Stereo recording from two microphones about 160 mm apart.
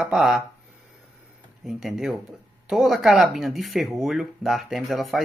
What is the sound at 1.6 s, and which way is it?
Speech, centre (ahead or behind).